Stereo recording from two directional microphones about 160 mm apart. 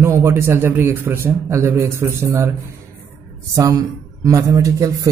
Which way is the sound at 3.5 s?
20° right (ahead or behind).